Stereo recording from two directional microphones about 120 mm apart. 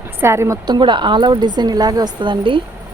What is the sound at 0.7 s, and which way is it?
Speech, 40° right (ahead or behind).